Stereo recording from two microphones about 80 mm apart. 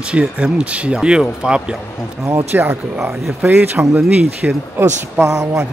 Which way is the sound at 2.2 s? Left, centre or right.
Right.